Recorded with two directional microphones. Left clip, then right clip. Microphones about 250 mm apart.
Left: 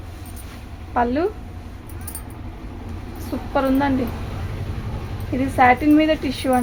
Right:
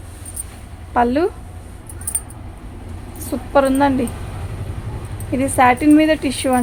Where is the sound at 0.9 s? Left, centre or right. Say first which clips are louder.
Right 4 dB; right.